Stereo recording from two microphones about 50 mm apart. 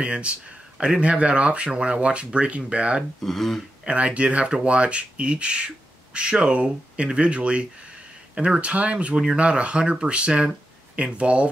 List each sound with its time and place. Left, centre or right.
0.0 s speech: right
3.2 s speech: centre
3.8 s speech: right